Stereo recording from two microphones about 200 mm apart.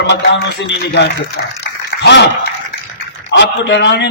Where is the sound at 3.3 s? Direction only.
60° left (ahead or behind).